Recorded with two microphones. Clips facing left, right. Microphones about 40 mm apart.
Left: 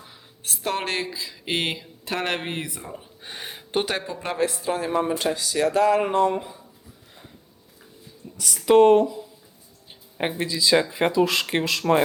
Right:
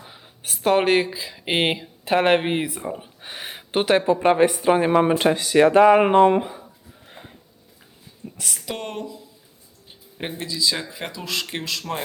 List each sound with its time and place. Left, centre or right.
0.0 s speech: centre
4.6 s speech: right
8.2 s speech: right
8.6 s speech: left